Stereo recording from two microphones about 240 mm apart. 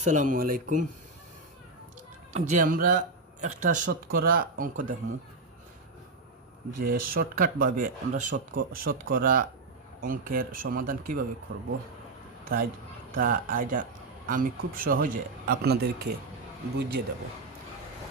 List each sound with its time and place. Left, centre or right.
0.0 s speech: right
2.3 s speech: right
6.7 s speech: right